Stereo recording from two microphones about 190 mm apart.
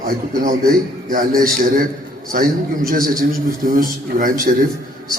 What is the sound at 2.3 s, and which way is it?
A man's voice, 50° right (ahead or behind).